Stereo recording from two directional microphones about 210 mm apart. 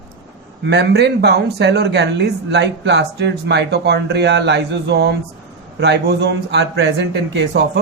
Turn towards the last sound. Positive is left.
turn(degrees=-60)  # may be behind; listen again after turning